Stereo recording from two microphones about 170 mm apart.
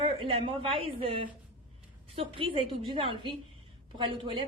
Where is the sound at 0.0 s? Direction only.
35° right (ahead or behind).